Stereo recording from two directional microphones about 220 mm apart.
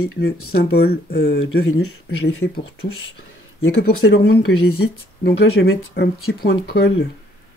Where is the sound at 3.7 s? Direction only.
50° left (ahead or behind).